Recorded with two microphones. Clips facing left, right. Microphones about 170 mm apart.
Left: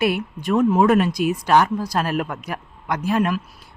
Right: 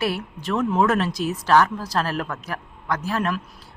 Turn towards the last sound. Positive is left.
turn(degrees=15)  # may be behind; listen again after turning